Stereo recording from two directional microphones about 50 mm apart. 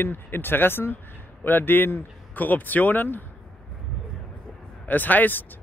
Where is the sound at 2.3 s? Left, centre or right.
Left.